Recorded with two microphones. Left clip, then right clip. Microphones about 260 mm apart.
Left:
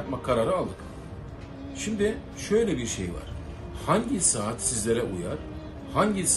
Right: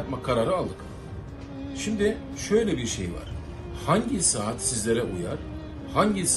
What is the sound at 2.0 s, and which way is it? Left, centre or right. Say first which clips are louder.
Speech: right 1 dB; centre.